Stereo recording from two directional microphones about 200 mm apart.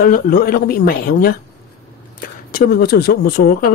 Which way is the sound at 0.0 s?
45° left (ahead or behind).